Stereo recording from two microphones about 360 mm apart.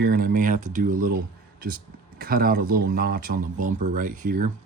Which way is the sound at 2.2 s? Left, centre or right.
Right.